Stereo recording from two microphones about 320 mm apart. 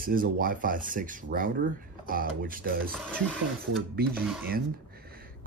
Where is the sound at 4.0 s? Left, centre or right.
Right.